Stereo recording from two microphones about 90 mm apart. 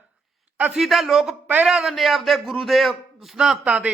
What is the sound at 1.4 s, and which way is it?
Speech, 20° right (ahead or behind).